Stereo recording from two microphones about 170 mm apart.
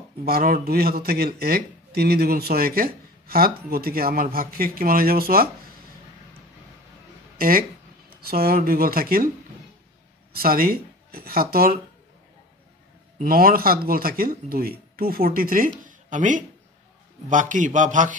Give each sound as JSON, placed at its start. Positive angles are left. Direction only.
{"t": 0.2, "sound": "speech", "side_deg": -60}
{"t": 7.3, "sound": "speech", "side_deg": -55}
{"t": 10.3, "sound": "speech", "side_deg": -60}
{"t": 13.2, "sound": "a man's voice", "side_deg": -60}